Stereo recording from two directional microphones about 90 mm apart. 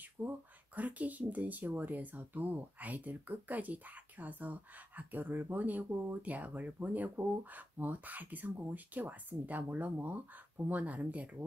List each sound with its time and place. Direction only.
0.2 s speech: 20° right (ahead or behind)